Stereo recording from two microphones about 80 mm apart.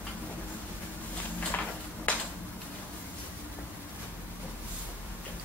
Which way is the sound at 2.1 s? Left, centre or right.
Centre.